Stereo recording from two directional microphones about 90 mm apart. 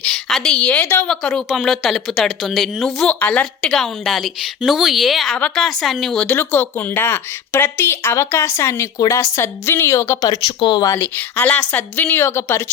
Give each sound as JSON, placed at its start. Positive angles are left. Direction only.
{"t": 0.0, "sound": "a woman's voice", "side_deg": 0}
{"t": 3.2, "sound": "a woman's voice", "side_deg": 15}
{"t": 10.2, "sound": "speech", "side_deg": 45}
{"t": 10.4, "sound": "speech", "side_deg": 60}
{"t": 10.9, "sound": "speech", "side_deg": 20}